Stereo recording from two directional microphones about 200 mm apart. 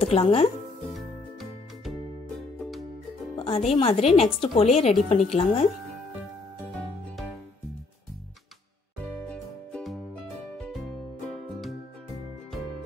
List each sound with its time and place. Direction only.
0.0 s speech: 25° left (ahead or behind)
0.9 s music: centre (ahead or behind)
3.3 s speech: 30° left (ahead or behind)
9.3 s music: 5° left (ahead or behind)